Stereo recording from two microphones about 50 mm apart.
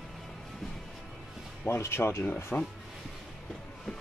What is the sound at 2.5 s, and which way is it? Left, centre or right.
Speech, left.